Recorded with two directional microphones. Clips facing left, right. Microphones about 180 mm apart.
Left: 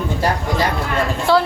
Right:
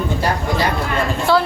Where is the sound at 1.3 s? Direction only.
30° left (ahead or behind).